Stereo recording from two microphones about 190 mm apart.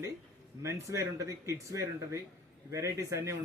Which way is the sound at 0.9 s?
15° right (ahead or behind).